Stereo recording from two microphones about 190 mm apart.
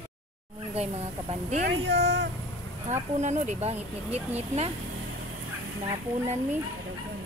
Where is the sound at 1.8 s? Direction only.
60° right (ahead or behind).